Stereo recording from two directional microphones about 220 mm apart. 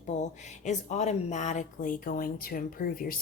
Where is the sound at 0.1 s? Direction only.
30° left (ahead or behind).